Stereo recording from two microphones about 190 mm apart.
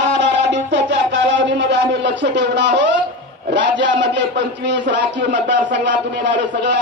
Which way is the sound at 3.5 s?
70° right (ahead or behind).